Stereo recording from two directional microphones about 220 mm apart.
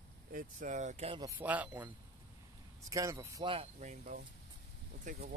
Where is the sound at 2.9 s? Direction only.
15° right (ahead or behind).